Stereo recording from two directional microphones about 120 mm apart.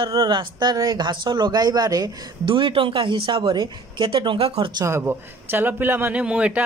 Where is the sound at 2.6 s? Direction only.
45° right (ahead or behind).